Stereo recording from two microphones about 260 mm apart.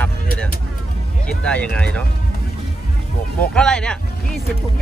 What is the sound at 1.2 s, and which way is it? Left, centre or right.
Speech, centre.